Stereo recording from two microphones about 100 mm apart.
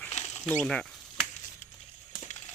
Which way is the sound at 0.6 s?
5° left (ahead or behind).